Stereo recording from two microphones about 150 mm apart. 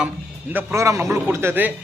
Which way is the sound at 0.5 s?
20° right (ahead or behind).